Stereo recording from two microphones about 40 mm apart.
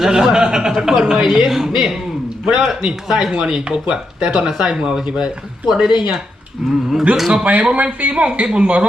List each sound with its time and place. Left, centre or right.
0.0 s a man's voice: centre
7.4 s speech: right